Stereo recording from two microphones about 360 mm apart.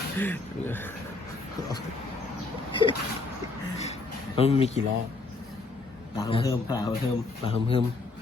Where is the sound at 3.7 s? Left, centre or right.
Centre.